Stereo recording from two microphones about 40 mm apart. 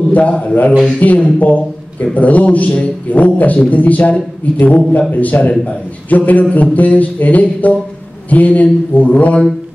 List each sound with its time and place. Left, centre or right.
0.1 s a man's voice: left